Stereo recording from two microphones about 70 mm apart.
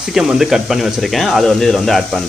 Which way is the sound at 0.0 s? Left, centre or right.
Centre.